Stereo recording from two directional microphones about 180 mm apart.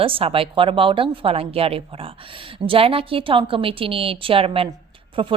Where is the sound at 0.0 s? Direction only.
30° right (ahead or behind).